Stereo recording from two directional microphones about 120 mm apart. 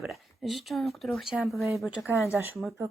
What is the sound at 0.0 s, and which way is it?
Speech, centre (ahead or behind).